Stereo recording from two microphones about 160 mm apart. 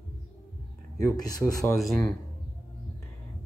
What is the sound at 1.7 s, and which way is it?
Speech, centre (ahead or behind).